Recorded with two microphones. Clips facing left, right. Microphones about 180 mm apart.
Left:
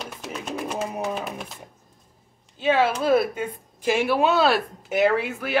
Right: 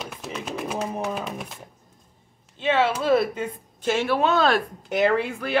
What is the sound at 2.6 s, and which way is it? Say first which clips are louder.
A woman's voice: left 1 dB; 5° left (ahead or behind).